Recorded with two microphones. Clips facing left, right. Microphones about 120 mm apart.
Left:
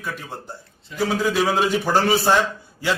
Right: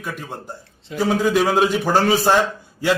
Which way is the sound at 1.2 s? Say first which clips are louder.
Right 3 dB; centre (ahead or behind).